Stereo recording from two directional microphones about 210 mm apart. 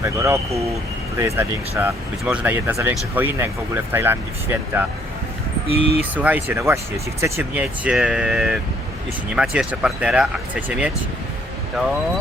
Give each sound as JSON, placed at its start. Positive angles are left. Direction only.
{"t": 0.0, "sound": "speech", "side_deg": -15}
{"t": 5.6, "sound": "speech", "side_deg": 30}
{"t": 6.0, "sound": "speech", "side_deg": -5}